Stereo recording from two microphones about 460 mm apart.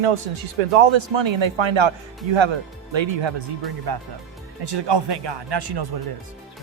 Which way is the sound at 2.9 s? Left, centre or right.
Right.